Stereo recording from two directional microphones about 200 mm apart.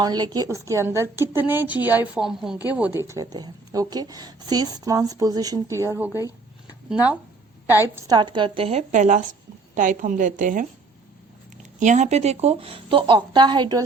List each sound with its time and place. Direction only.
0.0 s a woman's voice: 20° right (ahead or behind); by 10.7 s 40° right (ahead or behind)
11.8 s a woman's voice: 35° right (ahead or behind); by 13.8 s 20° right (ahead or behind)